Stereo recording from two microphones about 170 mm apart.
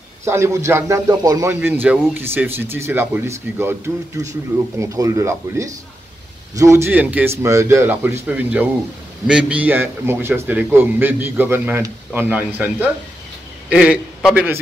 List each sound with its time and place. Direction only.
0.2 s a man's voice: 15° right (ahead or behind)